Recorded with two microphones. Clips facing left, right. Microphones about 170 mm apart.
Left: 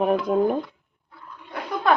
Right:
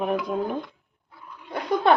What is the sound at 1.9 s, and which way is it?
Speech, 30° right (ahead or behind).